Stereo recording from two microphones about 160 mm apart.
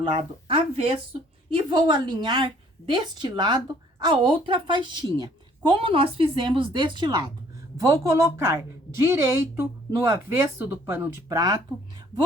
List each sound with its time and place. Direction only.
0.0 s a woman's voice: 30° right (ahead or behind); by 11.3 s 15° right (ahead or behind)
11.3 s a woman's voice: 25° right (ahead or behind)